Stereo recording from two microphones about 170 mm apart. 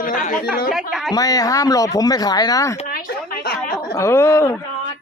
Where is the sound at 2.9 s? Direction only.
60° left (ahead or behind).